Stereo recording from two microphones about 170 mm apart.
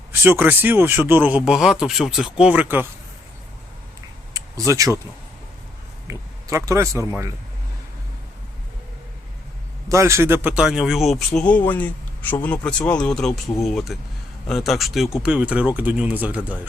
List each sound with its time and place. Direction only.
0.1 s speech: 15° right (ahead or behind)
4.4 s a sound: 20° right (ahead or behind)
6.1 s speech: 15° right (ahead or behind)
9.9 s speech: 15° right (ahead or behind)